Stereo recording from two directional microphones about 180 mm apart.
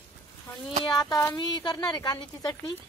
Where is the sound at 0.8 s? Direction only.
20° left (ahead or behind).